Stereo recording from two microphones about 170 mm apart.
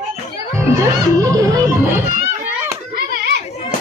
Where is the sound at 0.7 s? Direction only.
20° right (ahead or behind).